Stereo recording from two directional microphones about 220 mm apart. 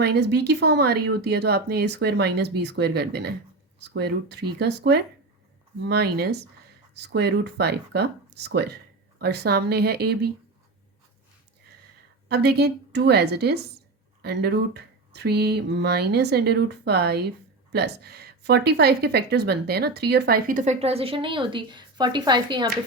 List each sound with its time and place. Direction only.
0.0 s speech: 50° right (ahead or behind)
12.3 s speech: 50° right (ahead or behind); by 22.7 s 20° right (ahead or behind)